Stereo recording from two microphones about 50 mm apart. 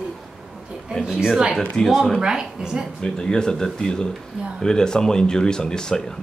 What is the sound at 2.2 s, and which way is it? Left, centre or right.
Speech, centre.